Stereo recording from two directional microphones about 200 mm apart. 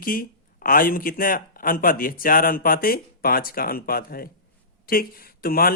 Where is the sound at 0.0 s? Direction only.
45° left (ahead or behind).